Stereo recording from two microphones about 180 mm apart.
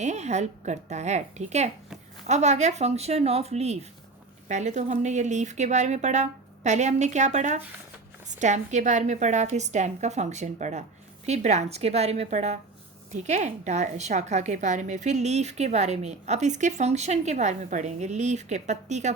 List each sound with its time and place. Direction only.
0.0 s a woman's voice: 40° right (ahead or behind)